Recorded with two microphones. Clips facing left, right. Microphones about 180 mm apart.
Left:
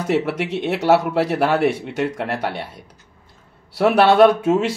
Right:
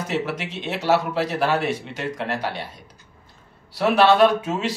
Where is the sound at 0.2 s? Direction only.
55° left (ahead or behind).